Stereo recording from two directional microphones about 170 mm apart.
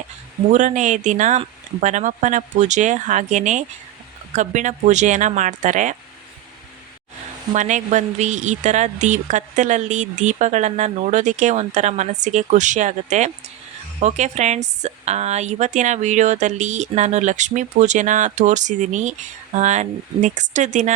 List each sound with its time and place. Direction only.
0.5 s a woman's voice: 45° right (ahead or behind)
7.5 s a woman's voice: 45° right (ahead or behind)